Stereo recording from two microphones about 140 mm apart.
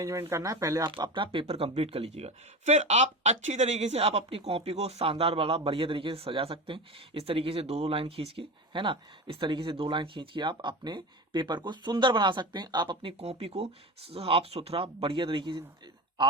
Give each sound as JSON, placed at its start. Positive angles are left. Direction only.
{"t": 0.0, "sound": "speech", "side_deg": -20}
{"t": 0.9, "sound": "speech", "side_deg": -35}